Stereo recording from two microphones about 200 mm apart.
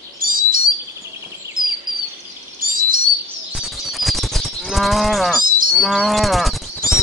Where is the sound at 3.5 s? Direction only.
Centre (ahead or behind).